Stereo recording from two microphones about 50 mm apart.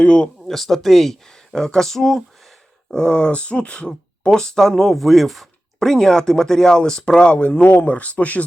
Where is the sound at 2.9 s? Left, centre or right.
Centre.